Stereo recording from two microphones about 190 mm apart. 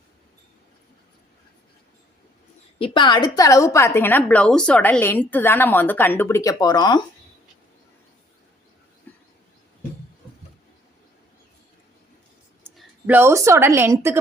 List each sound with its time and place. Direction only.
2.7 s a woman's voice: 25° left (ahead or behind)
9.1 s train: 10° left (ahead or behind)
13.1 s a woman's voice: 10° right (ahead or behind)